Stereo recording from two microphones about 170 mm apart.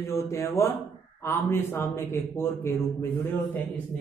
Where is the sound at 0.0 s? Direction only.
15° left (ahead or behind).